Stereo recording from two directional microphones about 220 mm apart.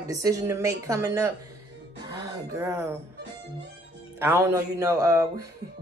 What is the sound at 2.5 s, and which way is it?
Speech, 15° right (ahead or behind).